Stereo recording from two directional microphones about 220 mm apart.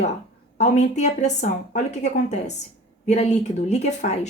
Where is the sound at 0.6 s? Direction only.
30° left (ahead or behind).